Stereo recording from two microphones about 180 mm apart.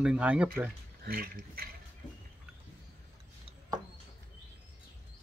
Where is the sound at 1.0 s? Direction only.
55° right (ahead or behind).